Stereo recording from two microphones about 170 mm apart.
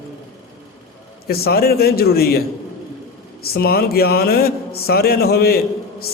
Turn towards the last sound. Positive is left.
turn(degrees=65)  # may be behind; listen again after turning